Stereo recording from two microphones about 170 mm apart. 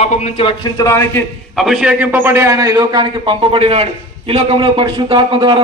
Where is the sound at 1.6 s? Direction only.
5° right (ahead or behind).